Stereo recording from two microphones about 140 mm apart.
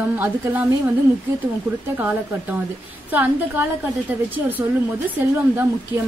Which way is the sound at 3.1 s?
15° right (ahead or behind).